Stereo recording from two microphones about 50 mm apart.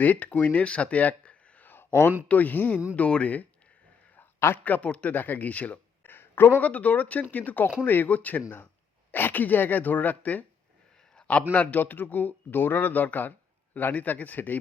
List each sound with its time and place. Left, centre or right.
0.0 s speech: left
1.6 s a sound: left
2.2 s speech: left
4.2 s a sound: left
4.6 s speech: left
5.1 s speech: left
6.1 s a sound: left
6.6 s speech: left
8.4 s speech: left
11.5 s speech: left